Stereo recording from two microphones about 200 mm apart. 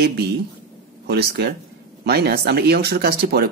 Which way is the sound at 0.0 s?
55° right (ahead or behind).